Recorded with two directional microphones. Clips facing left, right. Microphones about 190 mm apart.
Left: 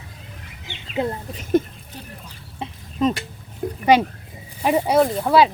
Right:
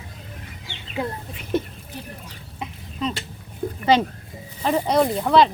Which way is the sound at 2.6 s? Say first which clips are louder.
Left 2 dB; 30° left (ahead or behind).